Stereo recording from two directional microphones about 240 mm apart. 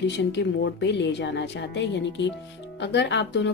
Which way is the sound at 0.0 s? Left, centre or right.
Left.